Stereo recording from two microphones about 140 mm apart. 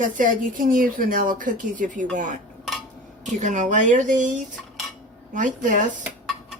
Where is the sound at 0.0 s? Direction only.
70° right (ahead or behind).